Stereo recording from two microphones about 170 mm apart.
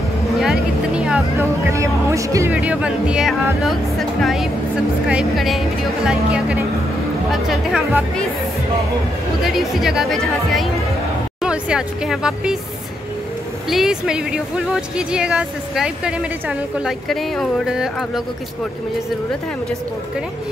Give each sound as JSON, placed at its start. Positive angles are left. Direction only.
{"t": 0.4, "sound": "vehicle", "side_deg": -5}
{"t": 1.7, "sound": "speech", "side_deg": -15}
{"t": 2.5, "sound": "speech", "side_deg": -5}
{"t": 9.4, "sound": "speech", "side_deg": 0}
{"t": 13.7, "sound": "speech", "side_deg": 0}